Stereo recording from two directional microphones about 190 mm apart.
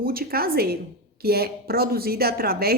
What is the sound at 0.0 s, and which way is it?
A woman's voice, 50° right (ahead or behind).